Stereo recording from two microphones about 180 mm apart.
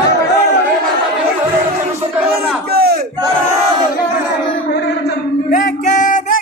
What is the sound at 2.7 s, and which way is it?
Battle cry, 60° right (ahead or behind).